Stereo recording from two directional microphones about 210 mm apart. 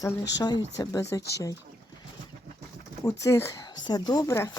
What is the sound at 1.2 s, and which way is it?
Speech, 50° left (ahead or behind).